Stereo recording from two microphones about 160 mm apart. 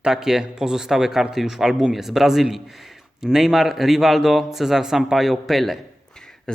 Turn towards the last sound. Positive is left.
turn(degrees=5)  # may be behind; listen again after turning